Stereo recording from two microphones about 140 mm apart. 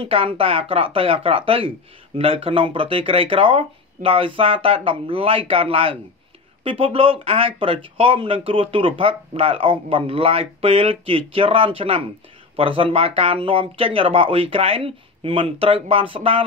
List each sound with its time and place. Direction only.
0.0 s speech: 40° right (ahead or behind)